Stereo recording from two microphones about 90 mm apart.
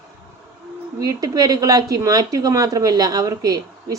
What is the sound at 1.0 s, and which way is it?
Speech, 45° right (ahead or behind).